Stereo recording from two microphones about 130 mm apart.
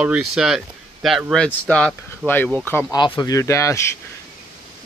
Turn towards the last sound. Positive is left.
turn(degrees=20)  # may be behind; listen again after turning